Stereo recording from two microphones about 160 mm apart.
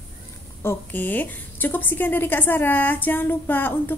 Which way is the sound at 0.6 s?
10° left (ahead or behind).